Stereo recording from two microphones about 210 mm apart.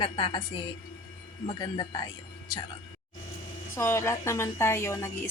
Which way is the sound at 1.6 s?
20° left (ahead or behind).